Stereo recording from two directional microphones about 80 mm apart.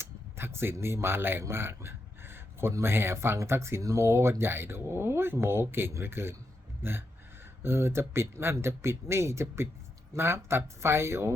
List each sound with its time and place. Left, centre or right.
0.0 s speech: right